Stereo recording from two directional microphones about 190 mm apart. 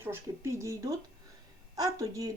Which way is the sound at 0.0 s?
15° right (ahead or behind).